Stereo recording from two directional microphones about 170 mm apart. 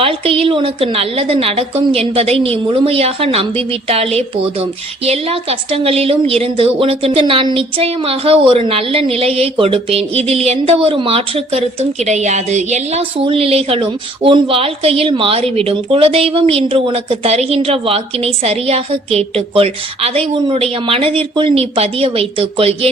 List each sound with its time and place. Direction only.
0.0 s a woman's voice: 35° right (ahead or behind)